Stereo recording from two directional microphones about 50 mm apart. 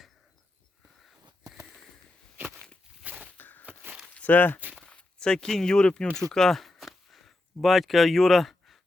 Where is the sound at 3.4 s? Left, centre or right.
Left.